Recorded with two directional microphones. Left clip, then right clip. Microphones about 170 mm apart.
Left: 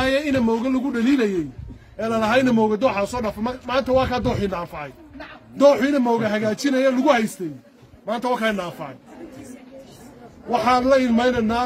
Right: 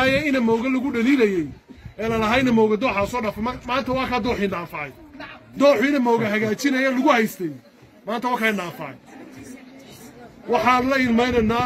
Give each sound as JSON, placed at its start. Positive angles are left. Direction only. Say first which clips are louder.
{"t": 0.1, "sound": "speech", "louder": "right 1 dB", "side_deg": 15}
{"t": 10.6, "sound": "speech", "louder": "left 3 dB", "side_deg": 15}